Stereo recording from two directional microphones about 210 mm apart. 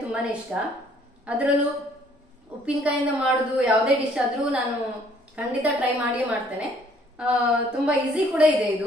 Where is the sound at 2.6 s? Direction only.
5° right (ahead or behind).